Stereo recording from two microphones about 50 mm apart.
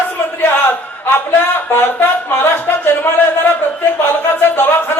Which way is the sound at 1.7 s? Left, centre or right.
Left.